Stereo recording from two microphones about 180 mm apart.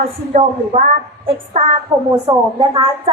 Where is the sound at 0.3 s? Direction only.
40° right (ahead or behind).